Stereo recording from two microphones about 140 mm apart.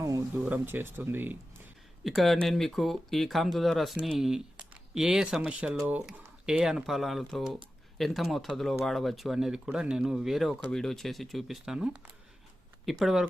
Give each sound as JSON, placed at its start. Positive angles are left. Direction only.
{"t": 0.0, "sound": "a sound", "side_deg": -25}
{"t": 0.4, "sound": "speech", "side_deg": -15}
{"t": 2.0, "sound": "speech", "side_deg": 0}